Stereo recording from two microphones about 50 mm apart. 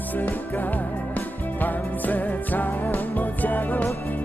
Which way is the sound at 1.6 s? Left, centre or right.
Left.